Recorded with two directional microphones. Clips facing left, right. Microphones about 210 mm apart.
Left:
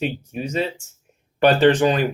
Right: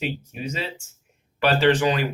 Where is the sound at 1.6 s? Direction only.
40° left (ahead or behind).